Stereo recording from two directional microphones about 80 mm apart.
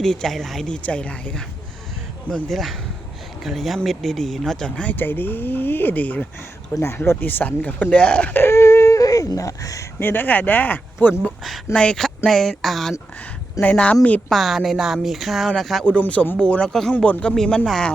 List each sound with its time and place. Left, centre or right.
0.0 s speech: centre
0.7 s speech: centre
4.8 s speech: left
6.7 s speech: left
10.0 s speech: left
11.7 s speech: centre
13.6 s speech: centre
14.3 s speech: centre
16.0 s speech: centre